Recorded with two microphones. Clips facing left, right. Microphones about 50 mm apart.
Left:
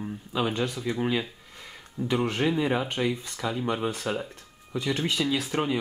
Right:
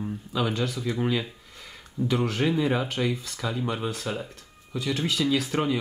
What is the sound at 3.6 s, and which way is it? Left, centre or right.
Speech, left.